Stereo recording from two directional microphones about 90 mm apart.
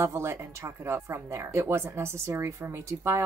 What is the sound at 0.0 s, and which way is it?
Speech, 30° right (ahead or behind).